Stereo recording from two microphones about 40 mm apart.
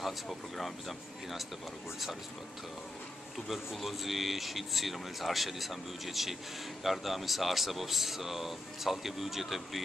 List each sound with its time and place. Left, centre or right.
0.0 s speech: centre
3.3 s speech: centre